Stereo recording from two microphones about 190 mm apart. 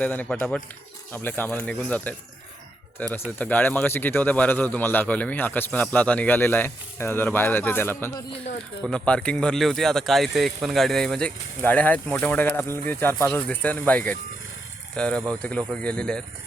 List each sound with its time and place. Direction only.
0.0 s a man's voice: 10° left (ahead or behind)